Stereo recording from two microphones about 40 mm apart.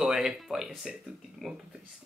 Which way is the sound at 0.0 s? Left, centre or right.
Centre.